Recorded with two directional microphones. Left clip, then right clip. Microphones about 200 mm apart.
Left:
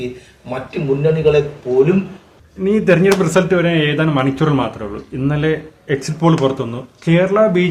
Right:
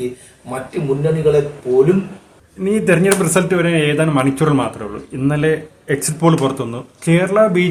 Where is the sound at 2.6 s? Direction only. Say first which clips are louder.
Left 1 dB; 10° left (ahead or behind).